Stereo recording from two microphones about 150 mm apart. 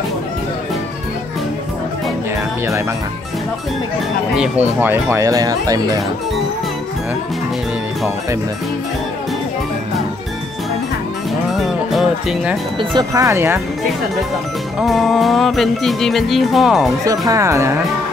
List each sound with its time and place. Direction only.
4.4 s speech: 10° right (ahead or behind)
11.5 s music: centre (ahead or behind)
12.7 s speech: 25° right (ahead or behind)
14.8 s music: centre (ahead or behind)
17.3 s speech: 20° right (ahead or behind)